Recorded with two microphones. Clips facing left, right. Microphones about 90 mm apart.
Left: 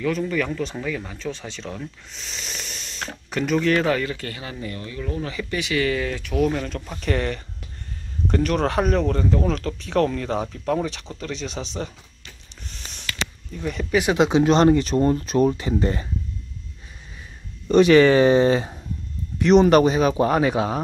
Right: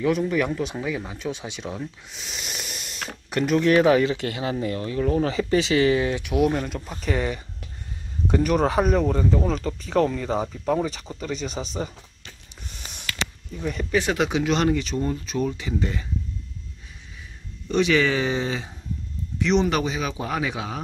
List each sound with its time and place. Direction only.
0.0 s speech: 15° right (ahead or behind)
3.6 s speech: 15° right (ahead or behind)
13.5 s speech: 5° right (ahead or behind)
13.9 s speech: 20° left (ahead or behind)
14.4 s speech: 35° left (ahead or behind)
17.6 s speech: 45° left (ahead or behind)